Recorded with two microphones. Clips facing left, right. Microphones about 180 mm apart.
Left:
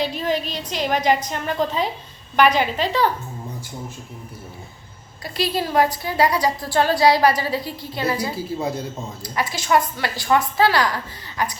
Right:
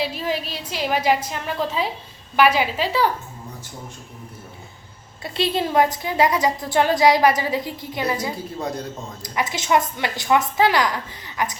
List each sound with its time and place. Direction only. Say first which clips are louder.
0.0 s a woman's voice: left 2 dB; 5° right (ahead or behind)
5.2 s a woman's voice: right 1 dB; 25° right (ahead or behind)
8.5 s a woman's voice: left 4 dB; 5° left (ahead or behind)
9.2 s a woman's voice: right 1 dB; 20° right (ahead or behind)